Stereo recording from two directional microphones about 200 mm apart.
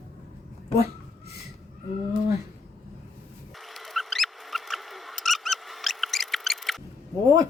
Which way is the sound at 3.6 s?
Centre (ahead or behind).